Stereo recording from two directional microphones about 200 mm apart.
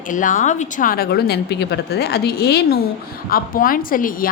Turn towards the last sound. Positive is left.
turn(degrees=45)  # may be behind; listen again after turning